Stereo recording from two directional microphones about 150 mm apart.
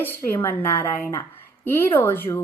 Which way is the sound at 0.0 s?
15° left (ahead or behind).